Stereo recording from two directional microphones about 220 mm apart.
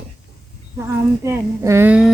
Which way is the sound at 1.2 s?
10° right (ahead or behind).